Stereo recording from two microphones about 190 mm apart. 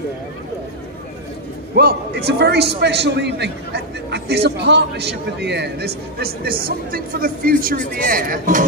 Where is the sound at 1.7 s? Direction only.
60° right (ahead or behind).